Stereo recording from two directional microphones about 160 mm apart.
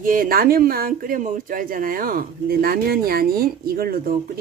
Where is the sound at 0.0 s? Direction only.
60° right (ahead or behind).